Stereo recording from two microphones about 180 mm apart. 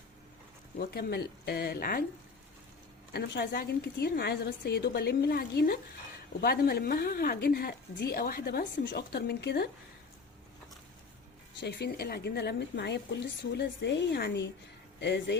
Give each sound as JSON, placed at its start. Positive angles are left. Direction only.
{"t": 0.8, "sound": "speech", "side_deg": 60}
{"t": 3.1, "sound": "speech", "side_deg": 65}
{"t": 11.6, "sound": "a woman's voice", "side_deg": 65}